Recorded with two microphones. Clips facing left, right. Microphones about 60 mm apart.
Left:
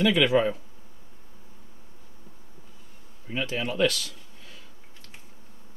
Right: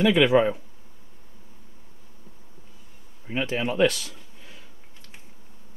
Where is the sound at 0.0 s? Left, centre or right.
Right.